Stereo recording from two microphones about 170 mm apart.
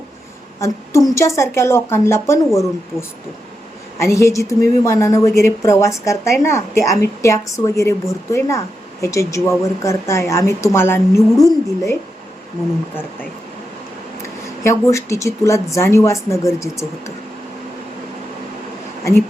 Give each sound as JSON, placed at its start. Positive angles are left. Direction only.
{"t": 0.6, "sound": "a woman's voice", "side_deg": 15}
{"t": 3.9, "sound": "a woman's voice", "side_deg": 15}
{"t": 14.6, "sound": "a woman's voice", "side_deg": 15}